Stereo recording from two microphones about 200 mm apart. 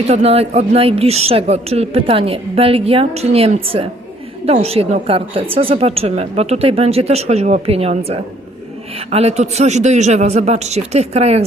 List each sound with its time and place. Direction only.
0.1 s a woman's voice: 30° right (ahead or behind)